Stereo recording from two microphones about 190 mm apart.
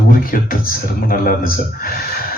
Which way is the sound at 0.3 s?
50° left (ahead or behind).